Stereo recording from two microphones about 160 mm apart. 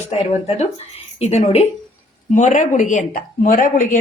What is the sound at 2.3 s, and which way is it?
A woman's voice, 50° left (ahead or behind).